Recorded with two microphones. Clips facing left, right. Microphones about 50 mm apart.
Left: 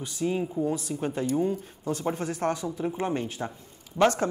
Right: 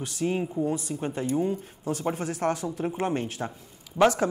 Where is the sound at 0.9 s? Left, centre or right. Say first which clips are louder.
Even; centre.